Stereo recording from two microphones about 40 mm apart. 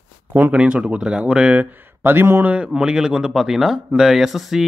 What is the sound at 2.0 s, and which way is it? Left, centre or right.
Speech, right.